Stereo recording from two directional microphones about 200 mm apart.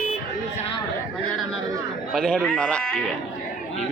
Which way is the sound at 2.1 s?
5° left (ahead or behind).